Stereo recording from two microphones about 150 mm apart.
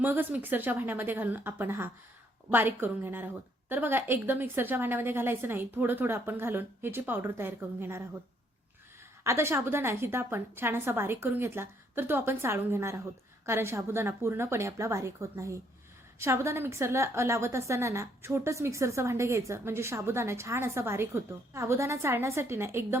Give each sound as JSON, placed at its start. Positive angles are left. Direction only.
{"t": 0.0, "sound": "a woman's voice", "side_deg": -15}
{"t": 9.2, "sound": "a woman's voice", "side_deg": -15}